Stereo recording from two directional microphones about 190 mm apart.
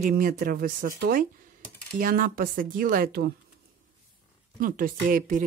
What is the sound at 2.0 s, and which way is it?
Speech, 45° right (ahead or behind).